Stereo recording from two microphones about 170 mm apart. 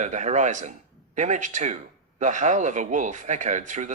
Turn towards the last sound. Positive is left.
turn(degrees=-45)  # may be behind; listen again after turning